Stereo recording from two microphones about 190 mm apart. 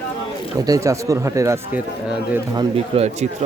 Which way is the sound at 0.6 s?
15° right (ahead or behind).